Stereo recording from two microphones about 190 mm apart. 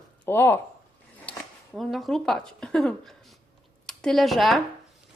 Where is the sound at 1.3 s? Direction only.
5° left (ahead or behind).